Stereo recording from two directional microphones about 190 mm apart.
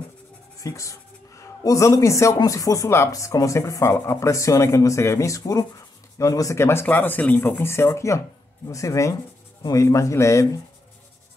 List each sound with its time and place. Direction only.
0.6 s speech: 15° left (ahead or behind)